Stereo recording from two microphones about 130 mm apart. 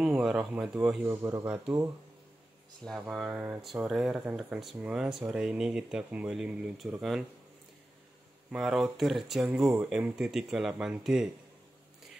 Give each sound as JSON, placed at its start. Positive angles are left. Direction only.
{"t": 0.0, "sound": "speech", "side_deg": -5}
{"t": 1.0, "sound": "speech", "side_deg": -20}
{"t": 2.8, "sound": "speech", "side_deg": 0}
{"t": 3.3, "sound": "speech", "side_deg": -15}
{"t": 3.6, "sound": "speech", "side_deg": 0}
{"t": 8.5, "sound": "speech", "side_deg": -5}